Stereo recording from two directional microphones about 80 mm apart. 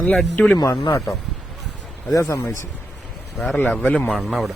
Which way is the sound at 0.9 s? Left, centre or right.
Left.